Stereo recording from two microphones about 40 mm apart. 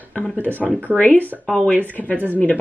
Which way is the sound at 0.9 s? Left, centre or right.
Left.